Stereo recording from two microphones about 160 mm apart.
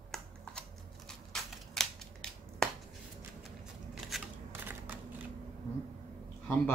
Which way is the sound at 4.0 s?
Centre (ahead or behind).